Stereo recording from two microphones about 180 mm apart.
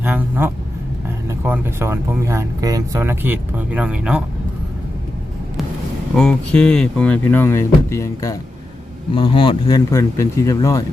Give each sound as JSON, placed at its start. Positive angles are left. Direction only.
{"t": 0.0, "sound": "speech", "side_deg": -10}
{"t": 6.1, "sound": "speech", "side_deg": 5}
{"t": 9.1, "sound": "speech", "side_deg": 30}